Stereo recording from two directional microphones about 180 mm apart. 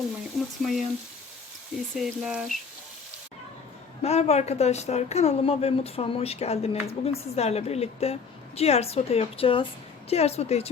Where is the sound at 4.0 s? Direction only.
35° left (ahead or behind).